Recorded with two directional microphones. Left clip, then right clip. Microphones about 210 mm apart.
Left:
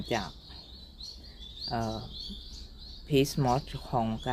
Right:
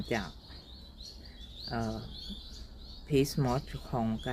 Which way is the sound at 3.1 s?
10° left (ahead or behind).